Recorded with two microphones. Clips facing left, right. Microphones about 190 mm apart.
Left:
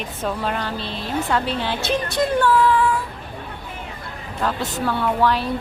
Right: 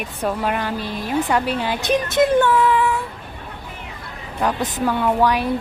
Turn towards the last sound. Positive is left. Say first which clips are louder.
# right 2 dB
turn(degrees=-15)  # may be behind; listen again after turning